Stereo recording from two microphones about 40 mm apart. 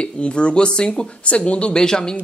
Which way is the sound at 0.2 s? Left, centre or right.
Left.